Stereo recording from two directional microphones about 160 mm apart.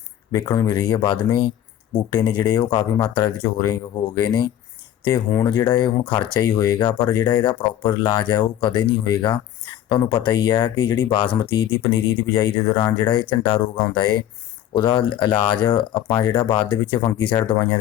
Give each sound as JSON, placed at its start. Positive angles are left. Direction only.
{"t": 0.3, "sound": "speech", "side_deg": 20}
{"t": 5.5, "sound": "speech", "side_deg": 25}